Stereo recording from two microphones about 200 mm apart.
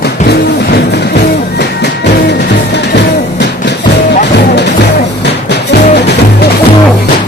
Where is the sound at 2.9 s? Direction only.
55° left (ahead or behind).